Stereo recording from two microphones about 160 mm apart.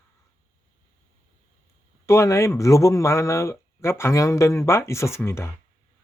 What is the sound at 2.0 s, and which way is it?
Speech, 15° left (ahead or behind).